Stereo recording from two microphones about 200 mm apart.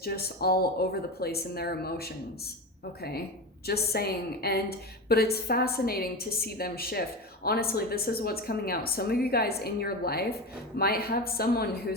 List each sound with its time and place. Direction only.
0.0 s a woman's voice: 50° left (ahead or behind)